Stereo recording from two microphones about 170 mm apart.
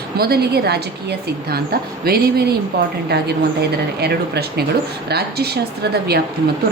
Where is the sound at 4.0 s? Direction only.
75° right (ahead or behind).